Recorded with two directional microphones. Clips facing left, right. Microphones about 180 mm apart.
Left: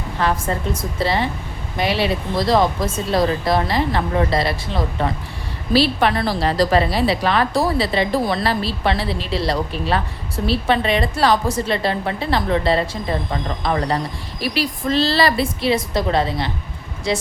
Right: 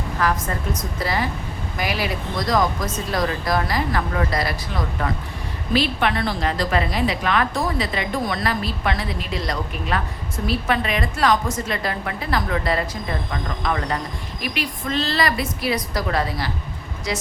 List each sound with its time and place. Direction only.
0.2 s a woman's voice: 25° left (ahead or behind)